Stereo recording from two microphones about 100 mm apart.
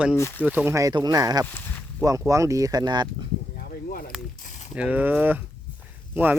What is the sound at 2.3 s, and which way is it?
Speech, 30° right (ahead or behind).